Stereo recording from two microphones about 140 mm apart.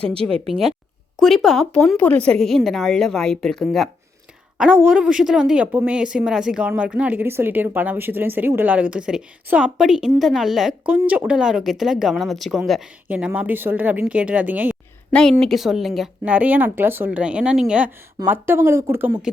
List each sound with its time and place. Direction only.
0.1 s speech: 45° right (ahead or behind)
1.1 s a woman's voice: centre (ahead or behind)
15.1 s a woman's voice: 5° left (ahead or behind); by 19.3 s 15° right (ahead or behind)